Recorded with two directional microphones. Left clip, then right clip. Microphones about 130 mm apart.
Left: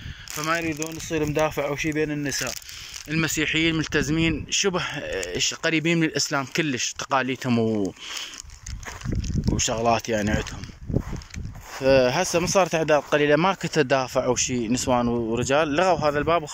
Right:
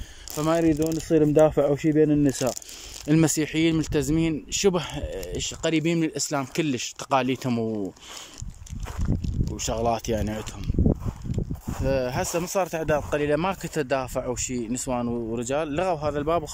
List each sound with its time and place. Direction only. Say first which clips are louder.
0.4 s speech: right 4 dB; 50° right (ahead or behind)
3.3 s speech: left 1 dB; 35° right (ahead or behind); by 7.8 s 10° right (ahead or behind)
9.6 s speech: left 3 dB; 10° right (ahead or behind)
11.8 s speech: left 7 dB; centre (ahead or behind); by 16.4 s 25° right (ahead or behind)